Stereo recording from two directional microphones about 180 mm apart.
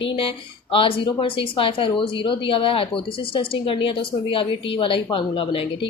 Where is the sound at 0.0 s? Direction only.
30° left (ahead or behind).